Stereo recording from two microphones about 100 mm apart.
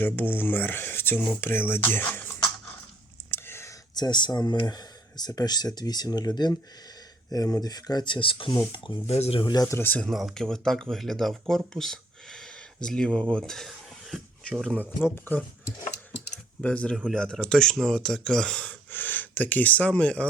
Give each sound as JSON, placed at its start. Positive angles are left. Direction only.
{"t": 0.0, "sound": "speech", "side_deg": 20}
{"t": 3.3, "sound": "whispering", "side_deg": 25}
{"t": 3.9, "sound": "speech", "side_deg": 45}
{"t": 9.0, "sound": "speech", "side_deg": 90}
{"t": 9.6, "sound": "speech", "side_deg": 20}
{"t": 10.1, "sound": "speech", "side_deg": 0}
{"t": 15.0, "sound": "speech", "side_deg": 20}
{"t": 16.3, "sound": "computer keyboard", "side_deg": 10}
{"t": 17.1, "sound": "speech", "side_deg": 5}